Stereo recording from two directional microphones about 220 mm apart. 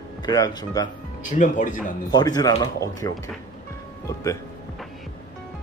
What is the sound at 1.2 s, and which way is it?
Speech, 35° left (ahead or behind).